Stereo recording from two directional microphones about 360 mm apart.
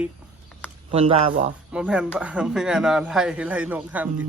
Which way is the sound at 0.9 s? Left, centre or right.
Centre.